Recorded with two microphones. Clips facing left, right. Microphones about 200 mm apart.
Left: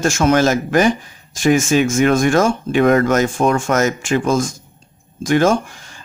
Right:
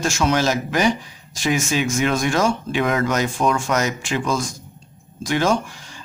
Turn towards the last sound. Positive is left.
turn(degrees=50)  # may be behind; listen again after turning